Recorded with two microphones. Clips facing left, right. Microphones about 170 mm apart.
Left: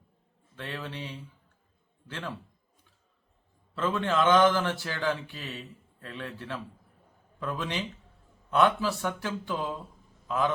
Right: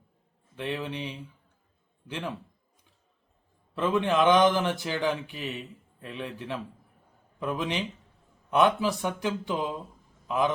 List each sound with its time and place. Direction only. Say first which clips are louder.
0.5 s a man's voice: right 5 dB; 15° right (ahead or behind)
3.8 s a man's voice: right 3 dB; 15° right (ahead or behind)